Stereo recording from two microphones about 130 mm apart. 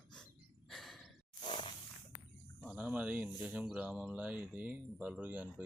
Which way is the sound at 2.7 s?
10° right (ahead or behind).